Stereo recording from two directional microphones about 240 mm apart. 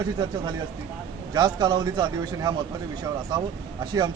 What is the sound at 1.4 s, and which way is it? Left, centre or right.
A man's voice, centre.